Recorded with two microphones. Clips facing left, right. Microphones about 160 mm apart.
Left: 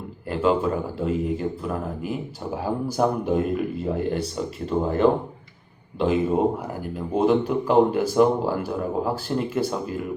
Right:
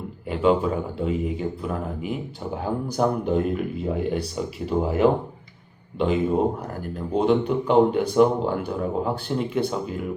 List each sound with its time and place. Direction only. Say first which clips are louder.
0.3 s speech: right 1 dB; centre (ahead or behind)